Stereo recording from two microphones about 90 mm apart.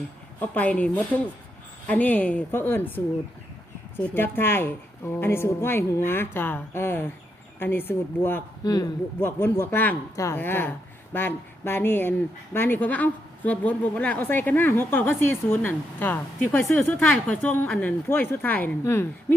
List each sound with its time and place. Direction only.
0.3 s speech: 15° left (ahead or behind)
4.0 s speech: 25° left (ahead or behind)
8.6 s a man's voice: 40° left (ahead or behind)
9.2 s a woman's voice: 25° left (ahead or behind)